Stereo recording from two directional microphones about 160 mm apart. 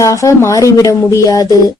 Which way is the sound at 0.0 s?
20° left (ahead or behind).